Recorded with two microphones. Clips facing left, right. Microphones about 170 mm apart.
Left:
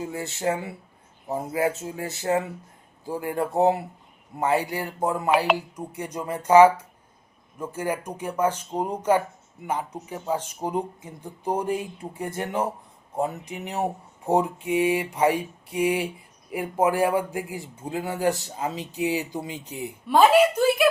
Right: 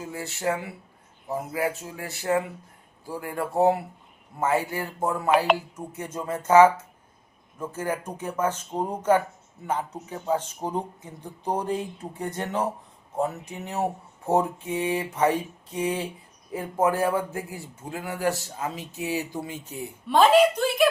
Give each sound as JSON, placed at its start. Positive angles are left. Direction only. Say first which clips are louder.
{"t": 0.0, "sound": "speech", "louder": "left 2 dB", "side_deg": 20}
{"t": 7.7, "sound": "speech", "louder": "left 1 dB", "side_deg": 10}